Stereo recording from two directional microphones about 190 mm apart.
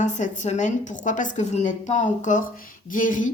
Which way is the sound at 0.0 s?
40° left (ahead or behind).